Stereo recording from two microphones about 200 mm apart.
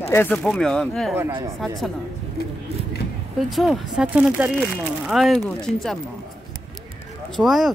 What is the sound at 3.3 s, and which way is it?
Speech, centre (ahead or behind).